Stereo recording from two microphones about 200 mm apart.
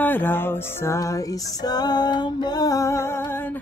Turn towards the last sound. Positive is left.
turn(degrees=10)  # may be behind; listen again after turning